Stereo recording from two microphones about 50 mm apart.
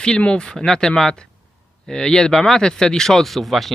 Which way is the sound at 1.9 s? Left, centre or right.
Centre.